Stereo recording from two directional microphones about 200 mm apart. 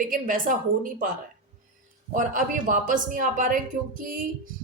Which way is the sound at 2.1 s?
40° right (ahead or behind).